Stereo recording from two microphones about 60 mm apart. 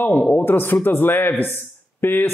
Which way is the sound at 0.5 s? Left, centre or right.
Left.